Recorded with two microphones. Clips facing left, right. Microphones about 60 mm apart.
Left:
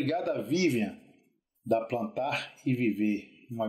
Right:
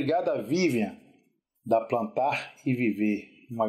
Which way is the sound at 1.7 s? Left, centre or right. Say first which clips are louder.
Right 3 dB; right.